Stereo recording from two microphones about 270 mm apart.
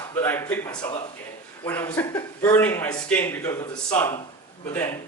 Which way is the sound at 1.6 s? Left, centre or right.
Centre.